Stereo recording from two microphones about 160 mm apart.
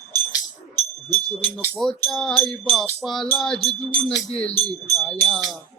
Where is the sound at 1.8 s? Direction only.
5° left (ahead or behind).